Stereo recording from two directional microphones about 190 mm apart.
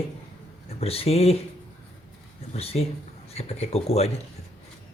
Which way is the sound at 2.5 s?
35° left (ahead or behind).